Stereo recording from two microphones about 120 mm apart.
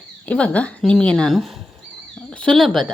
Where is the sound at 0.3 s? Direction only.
10° left (ahead or behind).